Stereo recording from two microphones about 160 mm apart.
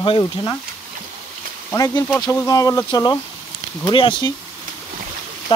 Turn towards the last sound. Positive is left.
turn(degrees=25)  # may be behind; listen again after turning